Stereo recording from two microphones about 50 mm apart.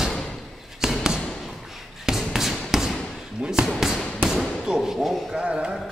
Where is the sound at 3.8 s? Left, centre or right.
Centre.